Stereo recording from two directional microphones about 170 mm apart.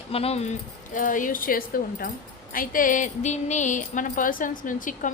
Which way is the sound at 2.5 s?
55° left (ahead or behind).